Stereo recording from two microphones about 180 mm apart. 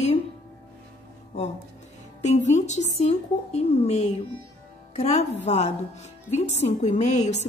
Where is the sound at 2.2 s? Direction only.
40° left (ahead or behind).